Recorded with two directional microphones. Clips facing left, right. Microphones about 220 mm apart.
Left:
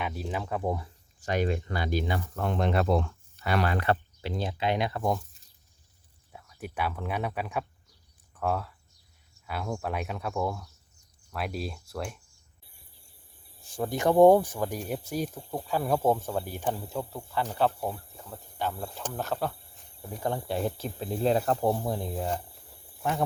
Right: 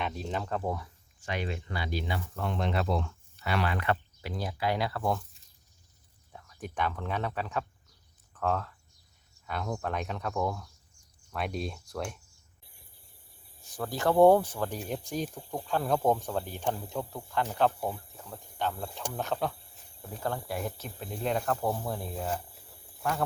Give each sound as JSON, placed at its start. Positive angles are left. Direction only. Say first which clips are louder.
{"t": 0.0, "sound": "speech", "louder": "left 1 dB", "side_deg": 5}
{"t": 1.2, "sound": "speech", "louder": "left 7 dB", "side_deg": 45}
{"t": 6.3, "sound": "speech", "louder": "left 1 dB", "side_deg": 10}
{"t": 13.8, "sound": "speech", "louder": "left 2 dB", "side_deg": 15}
{"t": 19.1, "sound": "cricket", "louder": "even", "side_deg": 0}
{"t": 20.1, "sound": "speech", "louder": "left 3 dB", "side_deg": 15}
{"t": 20.5, "sound": "speech", "louder": "left 5 dB", "side_deg": 30}